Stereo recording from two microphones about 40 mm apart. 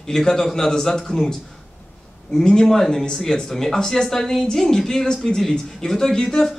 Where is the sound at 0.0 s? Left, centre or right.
Centre.